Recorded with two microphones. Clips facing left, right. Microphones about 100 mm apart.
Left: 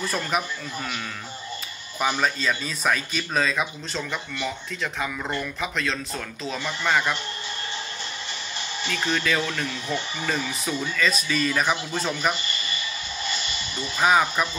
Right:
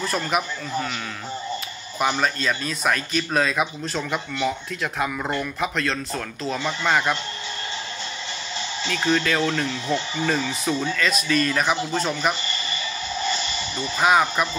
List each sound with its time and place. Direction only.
0.0 s speech: centre (ahead or behind)
2.0 s speech: centre (ahead or behind)
6.6 s speech: 15° right (ahead or behind)
9.1 s speech: centre (ahead or behind)
9.8 s speech: 20° right (ahead or behind)
10.3 s speech: 5° left (ahead or behind)
13.9 s speech: 5° right (ahead or behind)